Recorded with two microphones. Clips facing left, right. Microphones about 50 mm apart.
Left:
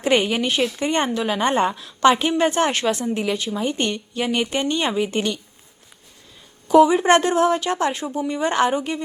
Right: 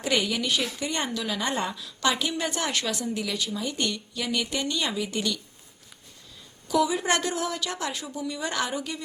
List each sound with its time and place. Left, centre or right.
0.0 s a woman's voice: left
6.7 s a woman's voice: left